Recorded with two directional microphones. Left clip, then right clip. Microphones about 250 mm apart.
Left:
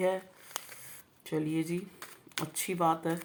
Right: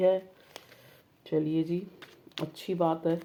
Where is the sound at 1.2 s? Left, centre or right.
Left.